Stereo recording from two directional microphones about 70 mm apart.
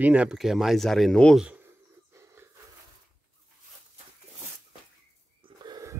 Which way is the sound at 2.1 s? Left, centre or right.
Right.